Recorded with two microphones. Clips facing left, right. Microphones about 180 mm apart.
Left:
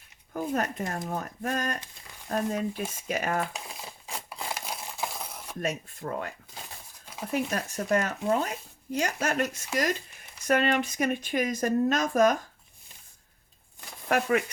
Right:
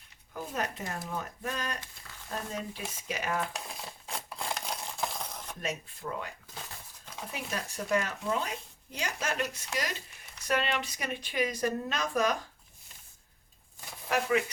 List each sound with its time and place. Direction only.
0.3 s speech: 50° left (ahead or behind)
3.4 s a sound: centre (ahead or behind)
5.6 s speech: 45° left (ahead or behind)
14.1 s speech: 55° left (ahead or behind)